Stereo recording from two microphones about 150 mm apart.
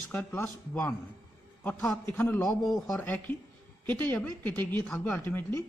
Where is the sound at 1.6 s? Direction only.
10° left (ahead or behind).